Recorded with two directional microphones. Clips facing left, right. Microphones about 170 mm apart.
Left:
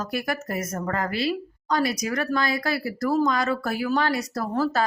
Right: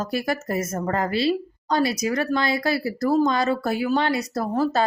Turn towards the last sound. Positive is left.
turn(degrees=-20)  # may be behind; listen again after turning